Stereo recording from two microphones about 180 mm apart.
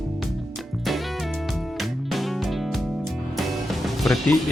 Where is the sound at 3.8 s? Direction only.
Centre (ahead or behind).